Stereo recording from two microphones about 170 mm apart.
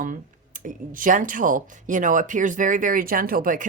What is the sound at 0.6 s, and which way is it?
Speech, 50° right (ahead or behind).